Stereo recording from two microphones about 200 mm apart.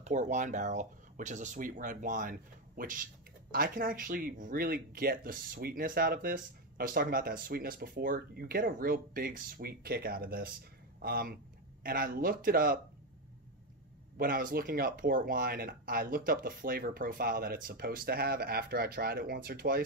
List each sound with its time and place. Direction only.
0.0 s speech: 35° right (ahead or behind)
14.1 s speech: 45° right (ahead or behind)